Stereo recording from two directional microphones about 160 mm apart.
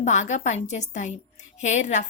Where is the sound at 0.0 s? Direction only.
45° left (ahead or behind).